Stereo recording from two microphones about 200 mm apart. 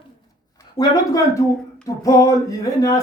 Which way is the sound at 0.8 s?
15° left (ahead or behind).